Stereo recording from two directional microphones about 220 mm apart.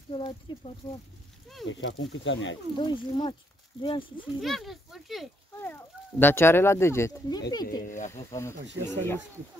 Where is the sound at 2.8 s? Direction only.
20° left (ahead or behind).